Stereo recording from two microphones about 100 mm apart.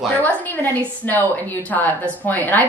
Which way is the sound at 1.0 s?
15° left (ahead or behind).